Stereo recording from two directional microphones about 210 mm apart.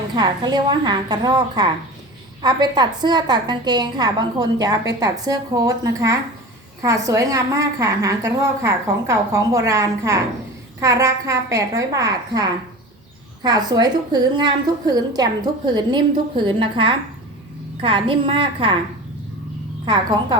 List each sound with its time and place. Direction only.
0.2 s a woman's voice: 20° right (ahead or behind)
19.8 s a woman's voice: 20° right (ahead or behind)